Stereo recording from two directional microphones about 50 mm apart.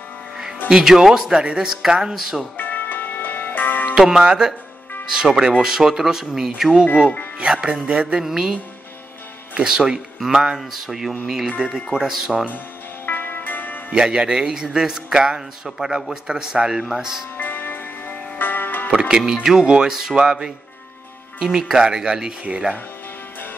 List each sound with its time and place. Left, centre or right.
0.7 s a man's voice: centre
1.4 s speech: right
1.7 s a man's voice: centre
2.5 s music: left
5.1 s a man's voice: centre
7.3 s speech: right
9.6 s a man's voice: centre
13.0 s music: left
13.9 s a man's voice: centre
17.4 s music: left
18.9 s a man's voice: centre